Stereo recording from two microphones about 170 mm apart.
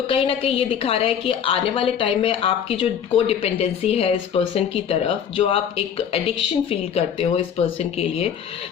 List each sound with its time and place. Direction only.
0.1 s speech: 35° left (ahead or behind)